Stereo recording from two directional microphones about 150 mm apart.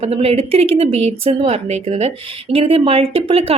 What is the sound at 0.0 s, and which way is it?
Speech, 40° right (ahead or behind).